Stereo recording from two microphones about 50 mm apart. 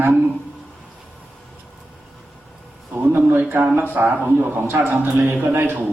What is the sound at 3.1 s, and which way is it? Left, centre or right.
Speech, right.